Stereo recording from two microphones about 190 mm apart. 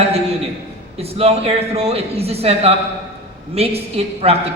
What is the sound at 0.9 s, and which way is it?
A man's voice, 30° right (ahead or behind).